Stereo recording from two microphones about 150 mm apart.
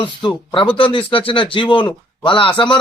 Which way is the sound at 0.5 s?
35° left (ahead or behind).